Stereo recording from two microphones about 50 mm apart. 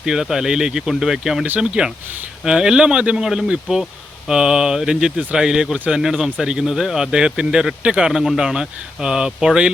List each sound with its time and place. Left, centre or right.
0.0 s speech: centre
3.2 s speech: centre